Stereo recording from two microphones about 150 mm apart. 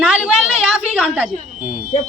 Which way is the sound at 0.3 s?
5° right (ahead or behind).